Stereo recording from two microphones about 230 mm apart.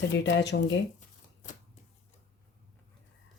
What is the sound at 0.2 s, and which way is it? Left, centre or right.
Speech, left.